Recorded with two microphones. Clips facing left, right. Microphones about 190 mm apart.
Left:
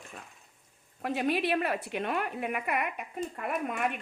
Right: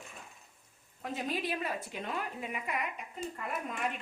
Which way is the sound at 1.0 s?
70° left (ahead or behind).